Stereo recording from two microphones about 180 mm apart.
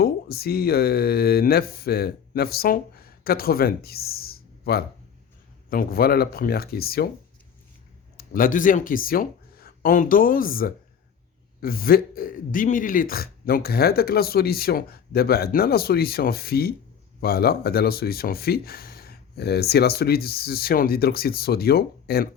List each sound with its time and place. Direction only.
0.0 s speech: 60° left (ahead or behind)
8.1 s speech: 55° left (ahead or behind)